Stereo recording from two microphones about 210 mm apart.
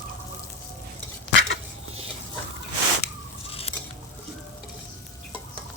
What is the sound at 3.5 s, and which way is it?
Patter, 30° left (ahead or behind).